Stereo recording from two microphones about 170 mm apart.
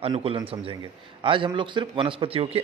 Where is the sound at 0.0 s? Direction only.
35° right (ahead or behind).